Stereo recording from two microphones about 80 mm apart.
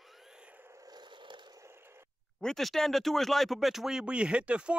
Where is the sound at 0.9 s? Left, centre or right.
Right.